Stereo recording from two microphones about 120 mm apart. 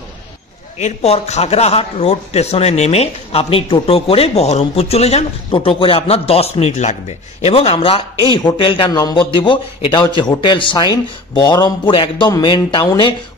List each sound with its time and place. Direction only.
0.7 s a man's voice: 65° left (ahead or behind); by 8.9 s 45° left (ahead or behind)
8.9 s speech: 30° left (ahead or behind)
9.3 s speech: 45° left (ahead or behind)